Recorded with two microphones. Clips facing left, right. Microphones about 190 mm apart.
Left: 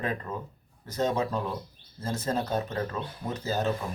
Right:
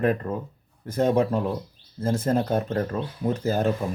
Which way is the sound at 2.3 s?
55° right (ahead or behind).